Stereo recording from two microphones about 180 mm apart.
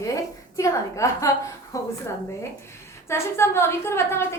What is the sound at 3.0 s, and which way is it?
A woman's voice, 15° left (ahead or behind).